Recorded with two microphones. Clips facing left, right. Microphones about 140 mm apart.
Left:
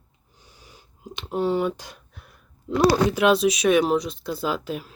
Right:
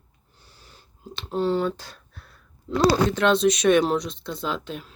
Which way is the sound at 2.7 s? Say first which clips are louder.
Left 1 dB; 15° left (ahead or behind).